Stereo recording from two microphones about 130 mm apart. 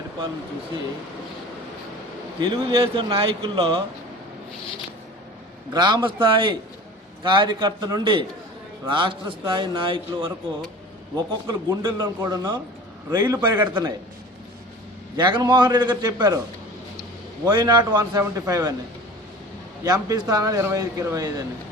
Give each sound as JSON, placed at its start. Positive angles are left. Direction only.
{"t": 2.4, "sound": "speech", "side_deg": -40}
{"t": 5.7, "sound": "speech", "side_deg": -35}
{"t": 12.0, "sound": "a man's voice", "side_deg": -25}
{"t": 15.1, "sound": "speech", "side_deg": -30}
{"t": 17.4, "sound": "a man's voice", "side_deg": -30}
{"t": 19.8, "sound": "a man's voice", "side_deg": -30}